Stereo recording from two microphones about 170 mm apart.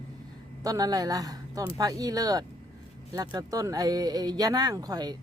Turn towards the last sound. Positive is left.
turn(degrees=-20)  # may be behind; listen again after turning